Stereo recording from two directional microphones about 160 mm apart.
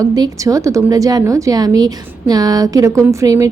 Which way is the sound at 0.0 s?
20° right (ahead or behind).